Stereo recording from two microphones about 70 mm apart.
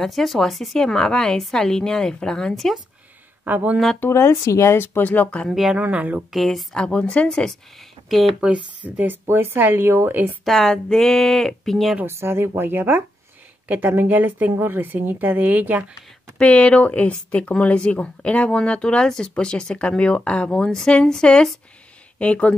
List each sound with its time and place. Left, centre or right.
0.0 s a woman's voice: centre
3.4 s a woman's voice: right
4.1 s speech: left; by 5.5 s centre
5.5 s speech: centre
5.8 s a woman's voice: right
6.3 s a woman's voice: centre
8.4 s speech: centre
8.8 s a woman's voice: right
10.4 s speech: centre
12.1 s a woman's voice: right
16.3 s a woman's voice: centre